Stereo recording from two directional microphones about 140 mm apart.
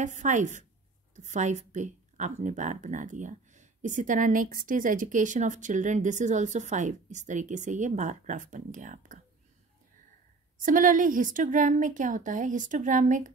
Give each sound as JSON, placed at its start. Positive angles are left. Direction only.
{"t": 0.0, "sound": "speech", "side_deg": -60}
{"t": 10.6, "sound": "a woman's voice", "side_deg": -70}